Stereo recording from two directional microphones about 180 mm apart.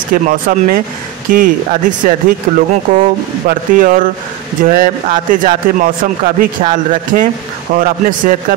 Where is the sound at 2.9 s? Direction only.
30° right (ahead or behind).